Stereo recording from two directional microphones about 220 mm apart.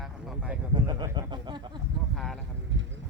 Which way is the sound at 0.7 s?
20° right (ahead or behind).